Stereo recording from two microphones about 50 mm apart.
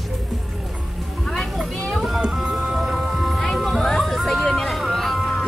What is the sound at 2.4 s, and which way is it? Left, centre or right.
Music, centre.